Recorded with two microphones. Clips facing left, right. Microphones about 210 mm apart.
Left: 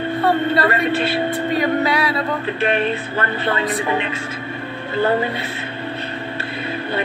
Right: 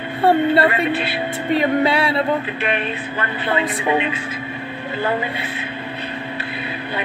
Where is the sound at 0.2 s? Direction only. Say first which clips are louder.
Right 4 dB; 30° right (ahead or behind).